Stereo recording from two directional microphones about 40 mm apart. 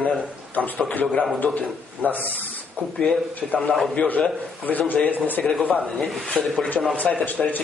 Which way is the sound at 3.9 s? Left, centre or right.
Left.